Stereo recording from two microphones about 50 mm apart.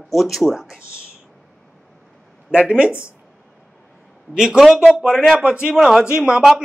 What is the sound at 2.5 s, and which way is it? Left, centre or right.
Speech, right.